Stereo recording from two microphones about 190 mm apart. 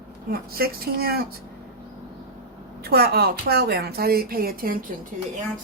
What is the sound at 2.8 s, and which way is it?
A woman's voice, 55° right (ahead or behind).